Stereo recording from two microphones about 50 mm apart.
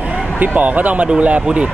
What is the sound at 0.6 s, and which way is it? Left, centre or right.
Speech, right.